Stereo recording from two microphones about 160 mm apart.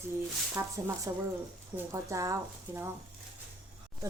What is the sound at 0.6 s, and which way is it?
Speech, 15° right (ahead or behind).